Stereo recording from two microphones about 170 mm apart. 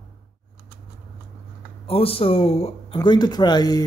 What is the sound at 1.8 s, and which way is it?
Speech, 35° left (ahead or behind).